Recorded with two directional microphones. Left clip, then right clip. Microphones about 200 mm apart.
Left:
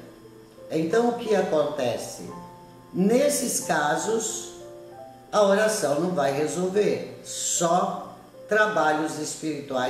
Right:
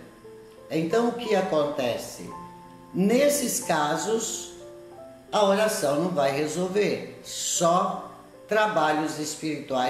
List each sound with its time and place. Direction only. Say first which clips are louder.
0.7 s a man's voice: left 2 dB; 20° right (ahead or behind)
5.3 s a man's voice: left 2 dB; 20° right (ahead or behind)